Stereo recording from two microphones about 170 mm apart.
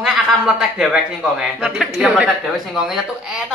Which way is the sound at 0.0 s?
5° right (ahead or behind).